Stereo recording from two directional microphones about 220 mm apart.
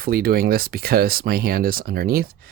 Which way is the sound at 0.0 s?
45° right (ahead or behind).